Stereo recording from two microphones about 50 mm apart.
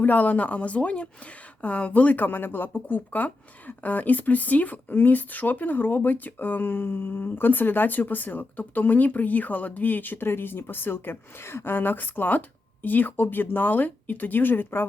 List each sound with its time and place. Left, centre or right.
0.0 s speech: left